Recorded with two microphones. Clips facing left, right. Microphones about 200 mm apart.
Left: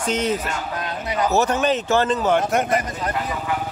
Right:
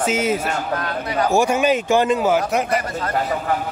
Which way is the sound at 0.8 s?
20° left (ahead or behind).